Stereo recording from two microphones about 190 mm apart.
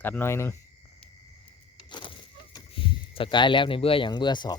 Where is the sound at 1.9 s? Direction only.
25° left (ahead or behind).